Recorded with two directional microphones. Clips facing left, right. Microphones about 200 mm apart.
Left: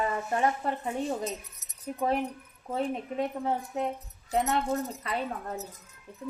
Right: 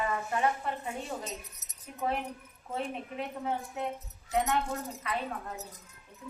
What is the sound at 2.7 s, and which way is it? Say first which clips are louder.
Speech: left 5 dB; 40° left (ahead or behind).